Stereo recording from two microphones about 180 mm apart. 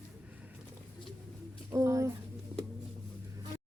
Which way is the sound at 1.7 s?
15° right (ahead or behind).